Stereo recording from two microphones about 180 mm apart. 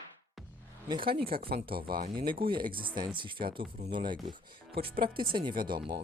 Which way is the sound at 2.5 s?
25° right (ahead or behind).